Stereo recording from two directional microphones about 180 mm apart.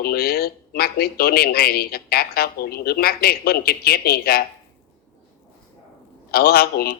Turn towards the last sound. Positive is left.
turn(degrees=60)  # may be behind; listen again after turning